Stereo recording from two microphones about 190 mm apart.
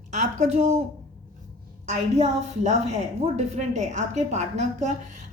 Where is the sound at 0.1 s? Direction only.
35° right (ahead or behind).